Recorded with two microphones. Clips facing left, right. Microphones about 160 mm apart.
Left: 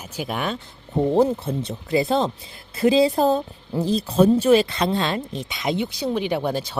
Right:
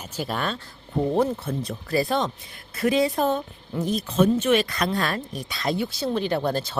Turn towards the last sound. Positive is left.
turn(degrees=15)  # may be behind; listen again after turning